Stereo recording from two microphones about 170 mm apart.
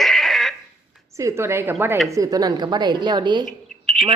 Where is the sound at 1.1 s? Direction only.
15° right (ahead or behind).